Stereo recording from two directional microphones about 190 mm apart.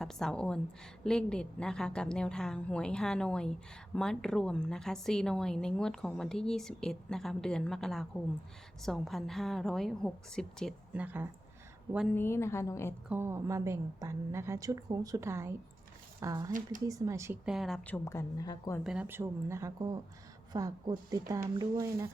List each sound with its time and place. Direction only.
0.0 s a woman's voice: centre (ahead or behind)
10.9 s a woman's voice: 10° right (ahead or behind)
12.0 s a woman's voice: 10° left (ahead or behind)
13.1 s a woman's voice: 10° right (ahead or behind)
16.5 s speech: 45° right (ahead or behind)
16.8 s a woman's voice: 15° right (ahead or behind)
17.4 s a woman's voice: centre (ahead or behind); by 18.8 s 20° left (ahead or behind)
18.8 s a woman's voice: 5° right (ahead or behind)